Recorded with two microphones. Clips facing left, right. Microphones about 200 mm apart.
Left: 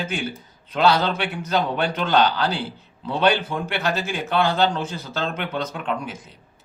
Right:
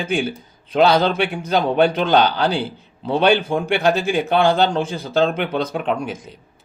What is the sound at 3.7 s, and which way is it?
Speech, 55° right (ahead or behind).